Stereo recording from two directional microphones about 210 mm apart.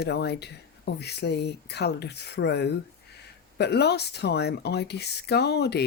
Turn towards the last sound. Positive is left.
turn(degrees=50)  # may be behind; listen again after turning